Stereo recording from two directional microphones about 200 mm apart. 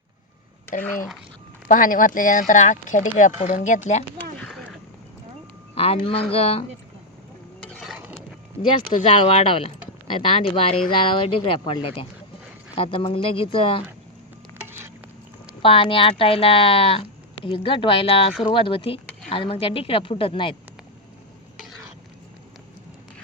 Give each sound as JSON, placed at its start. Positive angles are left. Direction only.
{"t": 1.6, "sound": "speech", "side_deg": 45}
{"t": 4.4, "sound": "a sound", "side_deg": 5}
{"t": 5.7, "sound": "a man's voice", "side_deg": 30}
{"t": 7.7, "sound": "a sound", "side_deg": 0}
{"t": 9.0, "sound": "speech", "side_deg": 30}
{"t": 14.6, "sound": "stir", "side_deg": -10}
{"t": 15.6, "sound": "speech", "side_deg": 25}